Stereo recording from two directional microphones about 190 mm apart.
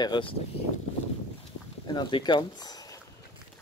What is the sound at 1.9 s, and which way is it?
Speech, 25° left (ahead or behind).